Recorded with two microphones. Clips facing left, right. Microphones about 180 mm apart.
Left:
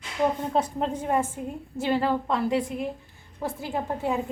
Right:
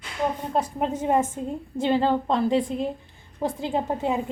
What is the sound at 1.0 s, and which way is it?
A woman's voice, 20° right (ahead or behind).